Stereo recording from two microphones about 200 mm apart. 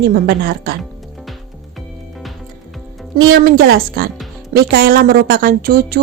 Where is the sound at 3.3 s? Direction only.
50° right (ahead or behind).